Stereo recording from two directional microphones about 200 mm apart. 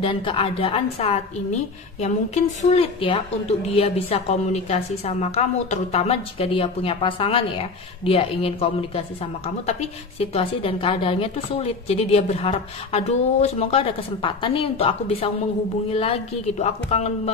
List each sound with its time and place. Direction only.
0.0 s a woman's voice: 25° left (ahead or behind)